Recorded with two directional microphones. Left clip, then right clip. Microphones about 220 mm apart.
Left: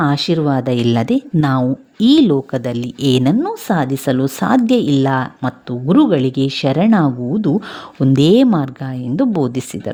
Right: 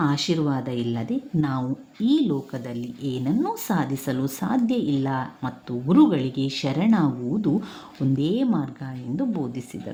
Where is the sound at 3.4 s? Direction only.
35° left (ahead or behind).